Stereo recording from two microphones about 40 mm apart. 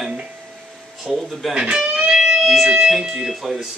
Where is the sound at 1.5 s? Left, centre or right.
Right.